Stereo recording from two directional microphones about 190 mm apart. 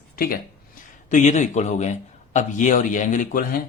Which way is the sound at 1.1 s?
40° left (ahead or behind).